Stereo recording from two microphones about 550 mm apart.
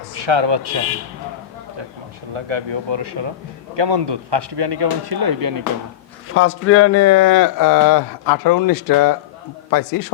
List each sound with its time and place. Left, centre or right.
0.1 s speech: right
2.3 s speech: right
6.3 s a man's voice: left